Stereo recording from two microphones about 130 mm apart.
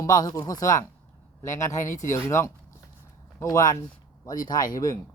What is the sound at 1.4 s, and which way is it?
Speech, 75° left (ahead or behind).